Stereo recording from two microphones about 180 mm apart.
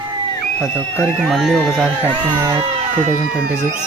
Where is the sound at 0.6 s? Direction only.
5° left (ahead or behind).